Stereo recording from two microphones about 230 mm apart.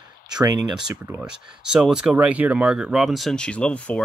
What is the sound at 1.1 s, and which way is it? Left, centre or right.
Speech, centre.